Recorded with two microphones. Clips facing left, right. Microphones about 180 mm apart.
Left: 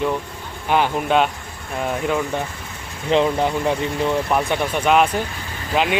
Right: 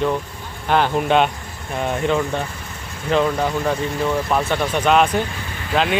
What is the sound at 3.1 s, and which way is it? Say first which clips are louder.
Speech: left 1 dB; 20° left (ahead or behind).